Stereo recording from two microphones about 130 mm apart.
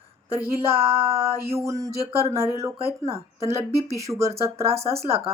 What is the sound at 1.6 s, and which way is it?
Speech, 25° right (ahead or behind).